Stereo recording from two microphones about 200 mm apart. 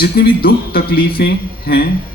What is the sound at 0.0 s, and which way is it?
A man's voice, 50° left (ahead or behind).